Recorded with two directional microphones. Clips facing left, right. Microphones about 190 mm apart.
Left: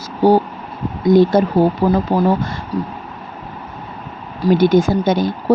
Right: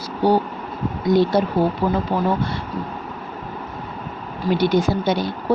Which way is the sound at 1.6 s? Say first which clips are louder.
Left 5 dB; 40° left (ahead or behind).